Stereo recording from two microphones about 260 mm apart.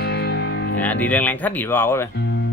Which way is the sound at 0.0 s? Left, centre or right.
Left.